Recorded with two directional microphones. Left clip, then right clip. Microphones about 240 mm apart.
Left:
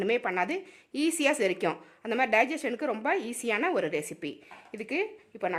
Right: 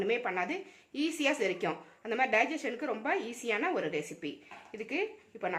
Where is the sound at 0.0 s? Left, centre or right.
Left.